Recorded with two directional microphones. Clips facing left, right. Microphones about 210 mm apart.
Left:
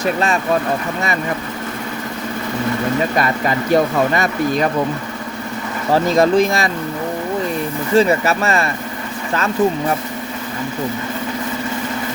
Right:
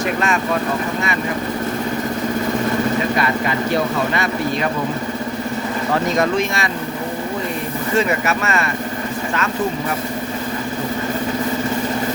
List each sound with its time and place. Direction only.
0.0 s speech: 35° left (ahead or behind)
4.1 s speech: 45° left (ahead or behind)
5.9 s speech: 35° left (ahead or behind)
7.9 s speech: 35° left (ahead or behind)